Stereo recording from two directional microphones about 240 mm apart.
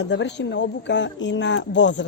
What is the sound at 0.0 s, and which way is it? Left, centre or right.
Speech, left.